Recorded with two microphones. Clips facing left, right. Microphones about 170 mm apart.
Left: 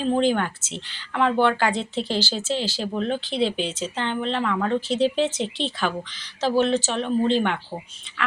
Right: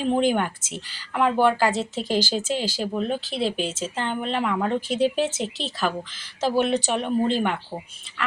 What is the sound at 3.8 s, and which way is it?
Speech, 5° right (ahead or behind).